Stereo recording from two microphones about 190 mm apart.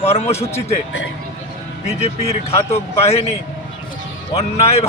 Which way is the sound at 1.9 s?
35° left (ahead or behind).